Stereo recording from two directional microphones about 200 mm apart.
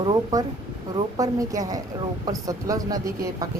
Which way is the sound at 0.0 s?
20° right (ahead or behind).